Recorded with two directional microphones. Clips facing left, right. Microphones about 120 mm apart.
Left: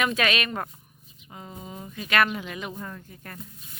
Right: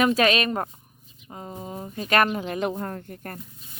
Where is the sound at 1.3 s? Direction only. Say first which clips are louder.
Right 4 dB; 35° right (ahead or behind).